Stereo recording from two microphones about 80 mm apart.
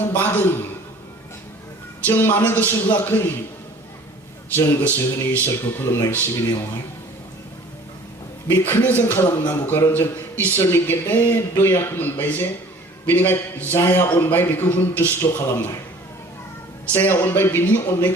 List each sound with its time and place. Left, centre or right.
0.0 s a sound: left
2.0 s a man's voice: left
4.5 s a man's voice: left
8.4 s a man's voice: left
16.9 s a man's voice: left